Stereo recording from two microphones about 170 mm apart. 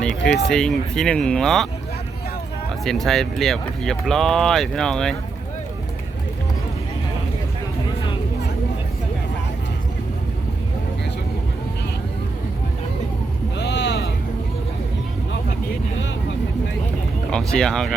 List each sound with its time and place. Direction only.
0.3 s speech: 5° left (ahead or behind)
2.8 s speech: centre (ahead or behind)
13.6 s a sound: 90° left
17.3 s speech: 5° left (ahead or behind)